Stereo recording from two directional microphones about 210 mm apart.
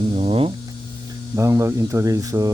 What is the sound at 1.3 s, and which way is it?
Speech, 15° right (ahead or behind).